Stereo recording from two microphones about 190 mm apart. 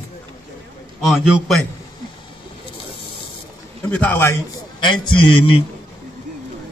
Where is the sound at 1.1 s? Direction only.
Centre (ahead or behind).